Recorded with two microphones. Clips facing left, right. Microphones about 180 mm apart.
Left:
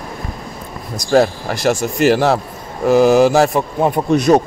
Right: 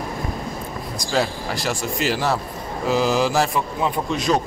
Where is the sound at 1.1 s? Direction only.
45° left (ahead or behind).